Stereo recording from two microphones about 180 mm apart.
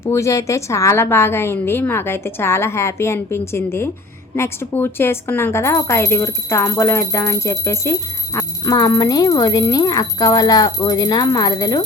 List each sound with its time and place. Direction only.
0.0 s speech: 15° left (ahead or behind)